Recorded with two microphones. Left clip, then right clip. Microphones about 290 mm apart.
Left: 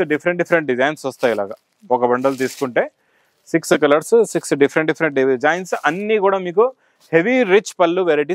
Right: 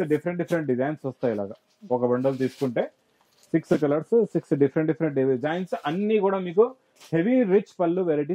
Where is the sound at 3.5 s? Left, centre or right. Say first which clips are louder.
Left 9 dB; centre.